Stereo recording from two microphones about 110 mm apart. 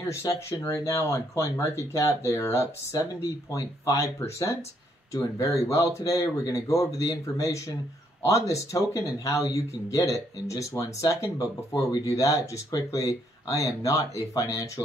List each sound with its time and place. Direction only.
0.1 s speech: 25° left (ahead or behind)